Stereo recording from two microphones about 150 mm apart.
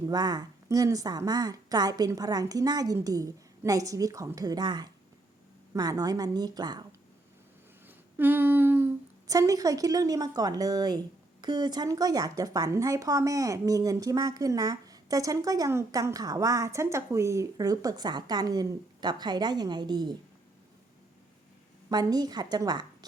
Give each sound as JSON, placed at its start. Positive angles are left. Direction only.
{"t": 0.1, "sound": "speech", "side_deg": -25}
{"t": 7.9, "sound": "humming", "side_deg": -10}
{"t": 9.2, "sound": "speech", "side_deg": -25}
{"t": 21.8, "sound": "speech", "side_deg": -25}